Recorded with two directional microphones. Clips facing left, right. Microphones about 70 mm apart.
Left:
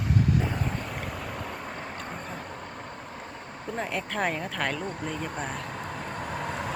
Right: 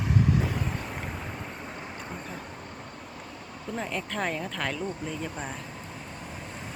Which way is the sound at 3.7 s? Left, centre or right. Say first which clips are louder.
Left 2 dB; centre.